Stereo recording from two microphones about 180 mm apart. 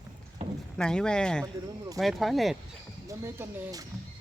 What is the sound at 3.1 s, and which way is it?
Speech, 15° right (ahead or behind).